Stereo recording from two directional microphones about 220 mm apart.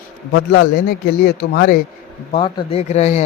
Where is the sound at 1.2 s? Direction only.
45° left (ahead or behind).